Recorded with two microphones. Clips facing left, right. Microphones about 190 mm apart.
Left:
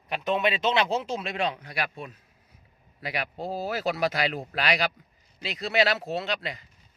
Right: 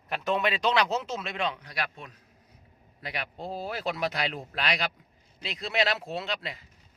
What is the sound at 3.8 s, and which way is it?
A man's voice, 5° left (ahead or behind).